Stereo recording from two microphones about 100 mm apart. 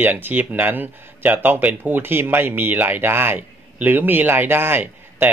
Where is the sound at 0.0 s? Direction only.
20° right (ahead or behind).